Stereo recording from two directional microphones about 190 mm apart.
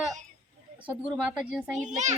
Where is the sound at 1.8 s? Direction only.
40° right (ahead or behind).